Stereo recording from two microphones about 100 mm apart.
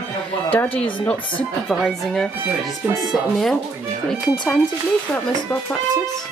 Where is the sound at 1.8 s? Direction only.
Centre (ahead or behind).